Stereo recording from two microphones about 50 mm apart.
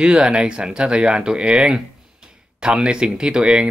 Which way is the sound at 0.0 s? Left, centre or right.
Centre.